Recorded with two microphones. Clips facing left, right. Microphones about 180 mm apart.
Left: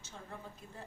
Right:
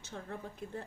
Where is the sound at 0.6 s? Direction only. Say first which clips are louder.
Right 11 dB; 60° right (ahead or behind).